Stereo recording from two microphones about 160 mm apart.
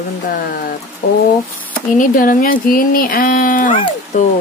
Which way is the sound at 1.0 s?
70° left (ahead or behind).